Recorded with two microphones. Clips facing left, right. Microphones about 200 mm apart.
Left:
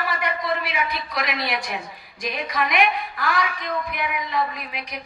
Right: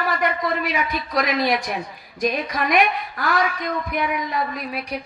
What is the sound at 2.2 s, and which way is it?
A woman's voice, 45° right (ahead or behind).